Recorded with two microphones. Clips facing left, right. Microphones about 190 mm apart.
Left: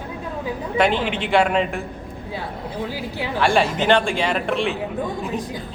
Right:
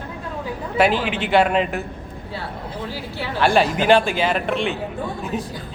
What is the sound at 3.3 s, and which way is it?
A man's voice, centre (ahead or behind).